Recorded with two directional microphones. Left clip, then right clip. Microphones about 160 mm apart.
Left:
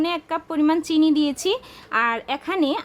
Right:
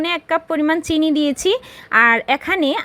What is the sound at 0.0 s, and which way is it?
A woman's voice, 20° right (ahead or behind).